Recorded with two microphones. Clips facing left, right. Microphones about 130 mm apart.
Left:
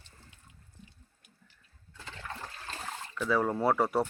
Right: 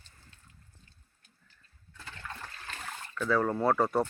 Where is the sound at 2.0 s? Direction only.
25° left (ahead or behind).